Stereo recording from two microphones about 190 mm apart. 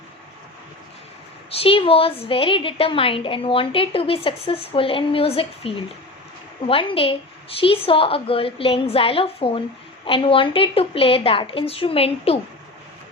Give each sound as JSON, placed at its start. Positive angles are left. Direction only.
{"t": 1.5, "sound": "a woman's voice", "side_deg": 30}